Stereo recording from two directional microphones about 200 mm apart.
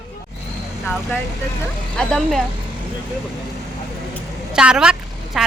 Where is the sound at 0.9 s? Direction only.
10° left (ahead or behind).